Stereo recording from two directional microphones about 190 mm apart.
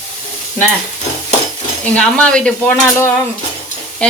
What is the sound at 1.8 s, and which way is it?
Dishes, 5° left (ahead or behind).